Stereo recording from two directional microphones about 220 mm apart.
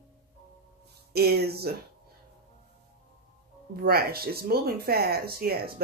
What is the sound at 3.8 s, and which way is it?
Speech, 45° right (ahead or behind).